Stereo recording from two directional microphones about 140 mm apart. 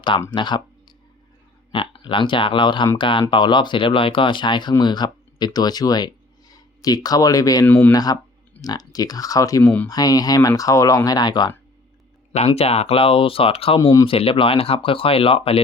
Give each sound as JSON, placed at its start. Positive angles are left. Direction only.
{"t": 0.3, "sound": "speech", "side_deg": 35}
{"t": 1.7, "sound": "speech", "side_deg": 40}
{"t": 7.7, "sound": "speech", "side_deg": 15}
{"t": 7.9, "sound": "speech", "side_deg": 25}
{"t": 12.3, "sound": "speech", "side_deg": 50}
{"t": 13.7, "sound": "speech", "side_deg": 20}
{"t": 14.1, "sound": "speech", "side_deg": 40}